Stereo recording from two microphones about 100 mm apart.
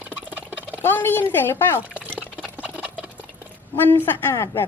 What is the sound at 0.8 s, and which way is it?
A woman's voice, 20° left (ahead or behind).